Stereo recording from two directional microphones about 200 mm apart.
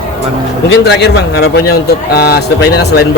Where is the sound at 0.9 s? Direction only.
55° left (ahead or behind).